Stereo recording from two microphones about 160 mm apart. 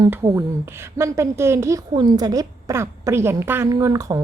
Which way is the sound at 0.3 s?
15° right (ahead or behind).